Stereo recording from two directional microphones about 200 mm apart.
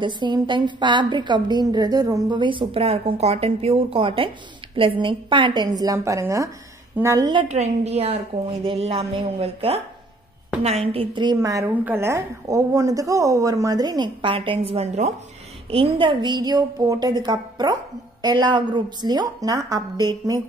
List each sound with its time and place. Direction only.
0.0 s a woman's voice: 25° right (ahead or behind)
7.5 s a woman's voice: 35° right (ahead or behind)